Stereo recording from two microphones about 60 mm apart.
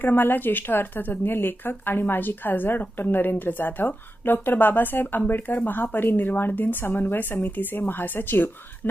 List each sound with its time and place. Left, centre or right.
0.0 s a woman's voice: left